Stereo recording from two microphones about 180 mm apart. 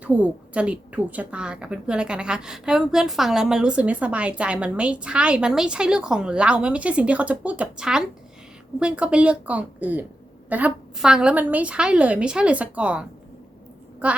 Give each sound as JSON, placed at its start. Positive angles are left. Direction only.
{"t": 0.0, "sound": "a woman's voice", "side_deg": -5}